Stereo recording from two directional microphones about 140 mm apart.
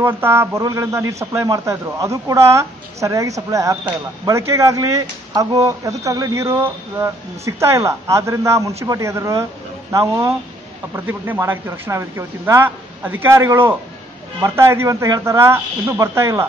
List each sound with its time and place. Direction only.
0.0 s speech: 15° right (ahead or behind)